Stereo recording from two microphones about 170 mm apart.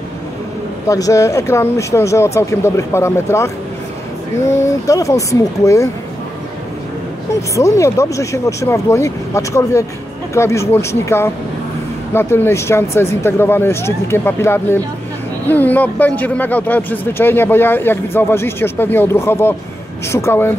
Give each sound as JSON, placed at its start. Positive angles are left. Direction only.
{"t": 0.8, "sound": "speech", "side_deg": 20}
{"t": 7.5, "sound": "speech", "side_deg": 15}